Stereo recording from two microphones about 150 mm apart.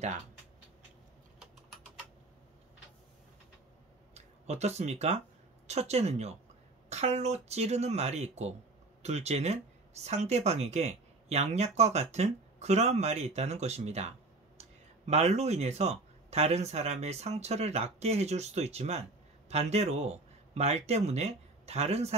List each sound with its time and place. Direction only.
4.1 s speech: 45° right (ahead or behind)